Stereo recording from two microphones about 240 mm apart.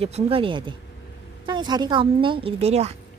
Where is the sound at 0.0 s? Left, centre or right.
Right.